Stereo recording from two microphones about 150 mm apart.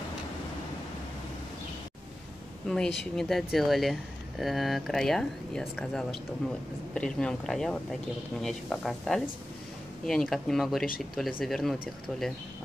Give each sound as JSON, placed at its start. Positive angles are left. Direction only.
{"t": 2.7, "sound": "speech", "side_deg": 5}